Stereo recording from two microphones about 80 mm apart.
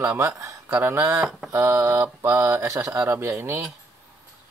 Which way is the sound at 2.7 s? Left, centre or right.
Right.